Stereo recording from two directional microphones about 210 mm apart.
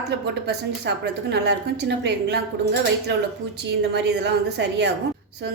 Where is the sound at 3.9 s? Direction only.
55° right (ahead or behind).